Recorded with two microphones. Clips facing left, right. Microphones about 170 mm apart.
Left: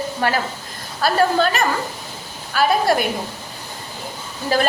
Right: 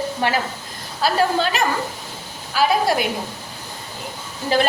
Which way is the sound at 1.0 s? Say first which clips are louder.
Left 2 dB; 50° left (ahead or behind).